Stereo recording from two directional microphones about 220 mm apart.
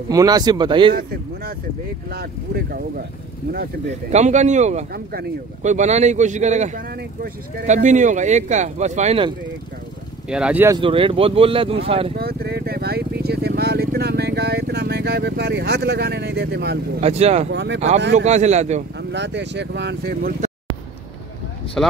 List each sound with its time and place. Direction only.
0.1 s speech: 15° right (ahead or behind)
2.0 s speech: 45° right (ahead or behind)
4.1 s speech: 30° right (ahead or behind)
10.3 s speech: 5° right (ahead or behind)
10.8 s speech: 25° right (ahead or behind)
12.2 s speech: 45° right (ahead or behind)
17.0 s speech: 30° right (ahead or behind)
17.5 s speech: 55° right (ahead or behind)
17.7 s speech: 30° right (ahead or behind)
18.9 s speech: 50° right (ahead or behind)
21.8 s speech: centre (ahead or behind)